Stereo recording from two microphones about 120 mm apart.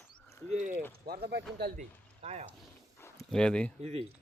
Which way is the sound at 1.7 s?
65° right (ahead or behind).